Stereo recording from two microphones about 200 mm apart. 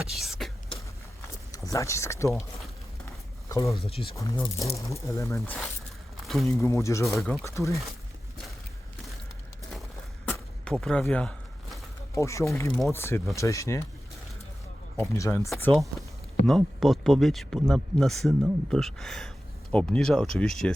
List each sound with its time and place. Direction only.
0.2 s beatboxing: centre (ahead or behind)
1.5 s speech: 15° left (ahead or behind)
3.5 s speech: 15° left (ahead or behind)
3.8 s speech: 30° left (ahead or behind)
4.1 s speech: 15° left (ahead or behind)
6.2 s speech: centre (ahead or behind)
6.6 s speech: 15° left (ahead or behind)
7.0 s speech: centre (ahead or behind)
7.4 s speech: 15° left (ahead or behind)
10.7 s speech: 5° left (ahead or behind)
15.1 s speech: 15° left (ahead or behind)